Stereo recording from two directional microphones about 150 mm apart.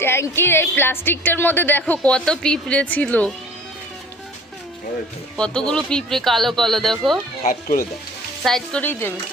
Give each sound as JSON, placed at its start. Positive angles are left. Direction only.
{"t": 0.0, "sound": "a woman's voice", "side_deg": 15}
{"t": 5.4, "sound": "speech", "side_deg": 5}
{"t": 7.4, "sound": "speech", "side_deg": 70}
{"t": 8.4, "sound": "a woman's voice", "side_deg": 5}